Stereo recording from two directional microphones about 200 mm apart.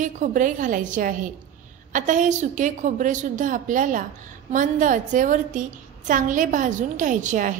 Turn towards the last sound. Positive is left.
turn(degrees=-40)  # may be behind; listen again after turning